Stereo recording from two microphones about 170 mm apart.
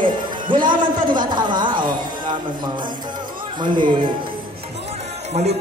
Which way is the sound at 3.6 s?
30° right (ahead or behind).